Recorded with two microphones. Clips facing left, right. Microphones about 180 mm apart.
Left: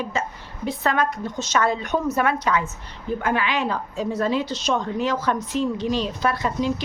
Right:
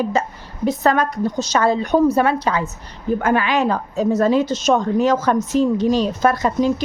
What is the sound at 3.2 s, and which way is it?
A woman's voice, 45° right (ahead or behind).